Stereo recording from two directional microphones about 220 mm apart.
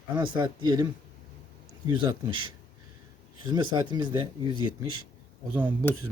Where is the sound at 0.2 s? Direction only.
20° right (ahead or behind).